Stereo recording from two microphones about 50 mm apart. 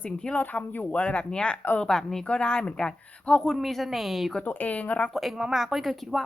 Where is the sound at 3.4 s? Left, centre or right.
Centre.